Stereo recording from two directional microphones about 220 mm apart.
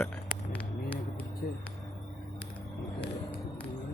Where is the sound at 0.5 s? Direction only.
5° left (ahead or behind).